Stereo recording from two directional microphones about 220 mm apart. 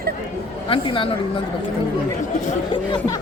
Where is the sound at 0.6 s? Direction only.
25° left (ahead or behind).